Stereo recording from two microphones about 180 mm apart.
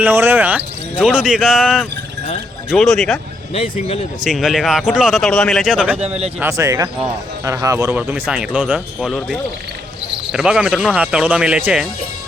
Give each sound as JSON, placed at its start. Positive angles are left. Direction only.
{"t": 0.0, "sound": "speech", "side_deg": -10}
{"t": 3.5, "sound": "speech", "side_deg": 35}
{"t": 4.2, "sound": "speech", "side_deg": 0}
{"t": 6.4, "sound": "speech", "side_deg": -15}